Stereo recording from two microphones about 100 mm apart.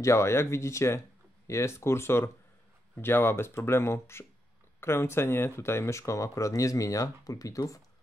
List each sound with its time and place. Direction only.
0.0 s speech: 30° left (ahead or behind)